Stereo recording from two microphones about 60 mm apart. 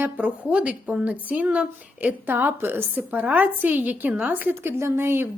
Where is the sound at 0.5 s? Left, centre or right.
Right.